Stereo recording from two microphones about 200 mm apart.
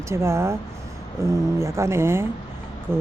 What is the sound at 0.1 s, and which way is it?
Speech, 15° right (ahead or behind).